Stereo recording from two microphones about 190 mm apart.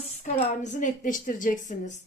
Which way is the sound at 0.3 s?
40° left (ahead or behind).